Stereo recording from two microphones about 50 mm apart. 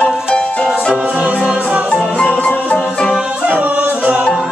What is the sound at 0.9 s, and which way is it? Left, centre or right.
Music, right.